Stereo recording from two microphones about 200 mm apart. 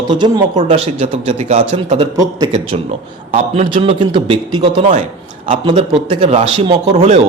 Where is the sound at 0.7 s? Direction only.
35° right (ahead or behind).